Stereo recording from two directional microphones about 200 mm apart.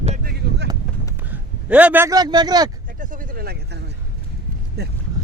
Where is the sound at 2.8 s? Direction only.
40° right (ahead or behind).